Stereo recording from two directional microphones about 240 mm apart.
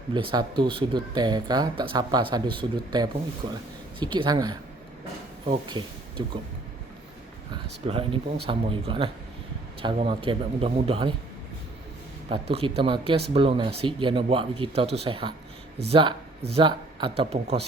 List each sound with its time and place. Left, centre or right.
0.1 s speech: centre
7.5 s speech: right
12.3 s speech: right